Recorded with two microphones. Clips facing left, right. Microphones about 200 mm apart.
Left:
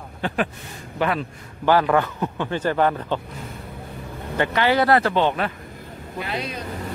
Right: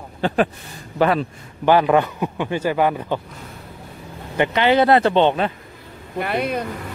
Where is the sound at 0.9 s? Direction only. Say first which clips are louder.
Right 5 dB; 35° right (ahead or behind).